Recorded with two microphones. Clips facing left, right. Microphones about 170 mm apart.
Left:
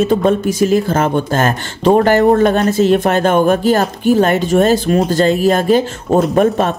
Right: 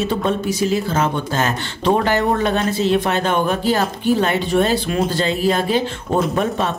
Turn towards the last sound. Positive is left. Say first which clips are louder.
# left 7 dB
turn(degrees=45)  # may be behind; listen again after turning